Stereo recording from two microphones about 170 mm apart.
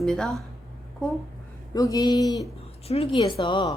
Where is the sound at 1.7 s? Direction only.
20° left (ahead or behind).